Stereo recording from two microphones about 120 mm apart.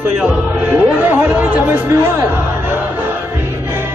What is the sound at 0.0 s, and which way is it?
Music, 15° right (ahead or behind).